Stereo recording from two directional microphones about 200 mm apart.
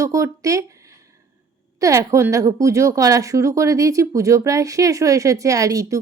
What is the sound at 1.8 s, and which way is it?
Speech, 15° right (ahead or behind).